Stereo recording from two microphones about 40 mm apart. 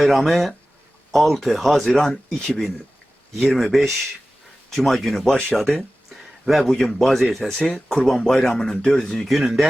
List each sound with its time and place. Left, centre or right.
0.0 s speech: centre
6.1 s a sound: centre
6.7 s speech: centre
7.7 s speech: centre
9.2 s speech: centre